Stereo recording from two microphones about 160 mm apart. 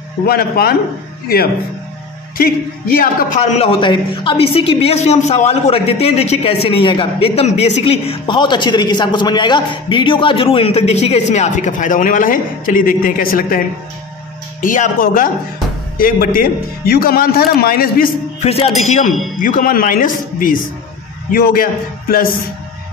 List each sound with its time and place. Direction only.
0.3 s a man's voice: 75° left (ahead or behind)
2.3 s speech: 70° left (ahead or behind)
3.3 s a woman's voice: 45° left (ahead or behind); by 13.6 s 65° left (ahead or behind)
14.6 s speech: 55° left (ahead or behind)
18.4 s a woman's voice: 40° left (ahead or behind); by 22.3 s 65° left (ahead or behind)